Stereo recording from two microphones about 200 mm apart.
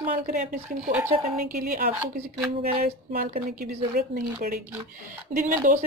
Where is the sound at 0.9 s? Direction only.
10° right (ahead or behind).